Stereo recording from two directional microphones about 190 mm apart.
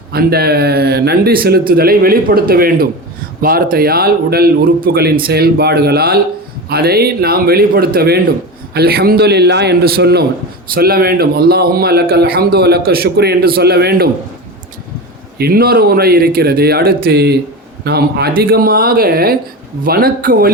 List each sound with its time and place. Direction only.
0.1 s speech: 55° right (ahead or behind)
15.4 s speech: 55° right (ahead or behind)